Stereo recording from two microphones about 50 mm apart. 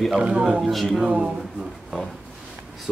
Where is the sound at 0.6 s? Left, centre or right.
Centre.